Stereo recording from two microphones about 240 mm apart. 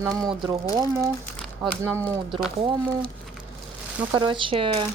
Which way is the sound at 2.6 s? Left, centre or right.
Centre.